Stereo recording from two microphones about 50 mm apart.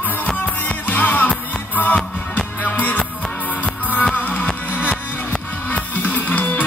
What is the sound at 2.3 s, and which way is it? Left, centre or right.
Music, left.